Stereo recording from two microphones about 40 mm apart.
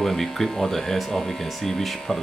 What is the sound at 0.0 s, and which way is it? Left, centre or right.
Speech, centre.